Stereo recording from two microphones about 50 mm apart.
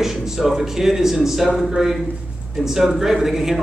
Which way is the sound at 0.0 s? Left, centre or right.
Centre.